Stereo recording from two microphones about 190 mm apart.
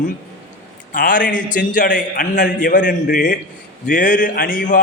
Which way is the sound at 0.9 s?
45° left (ahead or behind).